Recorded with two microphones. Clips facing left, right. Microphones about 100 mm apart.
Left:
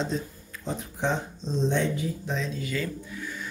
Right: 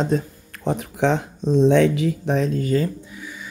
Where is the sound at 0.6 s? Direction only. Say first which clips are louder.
Right 9 dB; 75° right (ahead or behind); by 2.8 s 45° right (ahead or behind).